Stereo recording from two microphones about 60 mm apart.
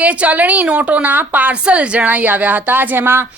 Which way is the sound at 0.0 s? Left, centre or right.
Right.